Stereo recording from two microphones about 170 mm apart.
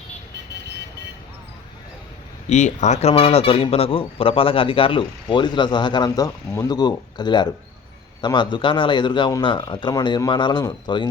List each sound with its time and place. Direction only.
2.5 s speech: 45° left (ahead or behind); by 11.1 s 25° left (ahead or behind)